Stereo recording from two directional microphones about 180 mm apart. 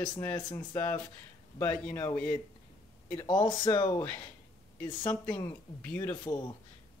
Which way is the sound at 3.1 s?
25° left (ahead or behind).